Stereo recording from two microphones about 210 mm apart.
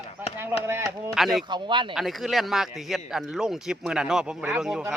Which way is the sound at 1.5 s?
20° right (ahead or behind).